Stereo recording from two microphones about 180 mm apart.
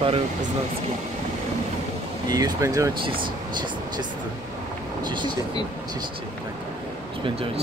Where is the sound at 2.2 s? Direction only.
20° right (ahead or behind).